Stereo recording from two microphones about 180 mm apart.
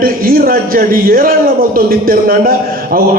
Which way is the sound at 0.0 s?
55° right (ahead or behind).